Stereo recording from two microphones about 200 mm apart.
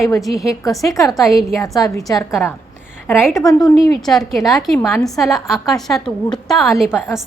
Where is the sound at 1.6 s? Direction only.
15° left (ahead or behind).